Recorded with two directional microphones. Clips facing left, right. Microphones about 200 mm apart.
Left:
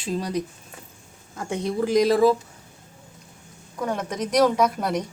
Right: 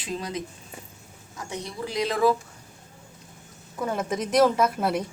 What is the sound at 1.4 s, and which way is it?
Speech, 55° left (ahead or behind).